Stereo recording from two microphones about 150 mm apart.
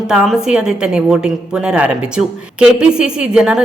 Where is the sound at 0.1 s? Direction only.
5° right (ahead or behind).